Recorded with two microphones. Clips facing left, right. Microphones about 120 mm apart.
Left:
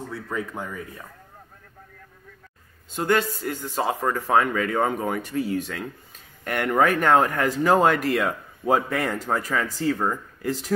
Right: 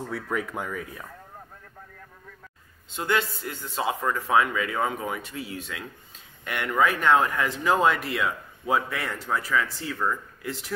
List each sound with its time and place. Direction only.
0.3 s speech: 15° right (ahead or behind)
2.9 s speech: 45° left (ahead or behind)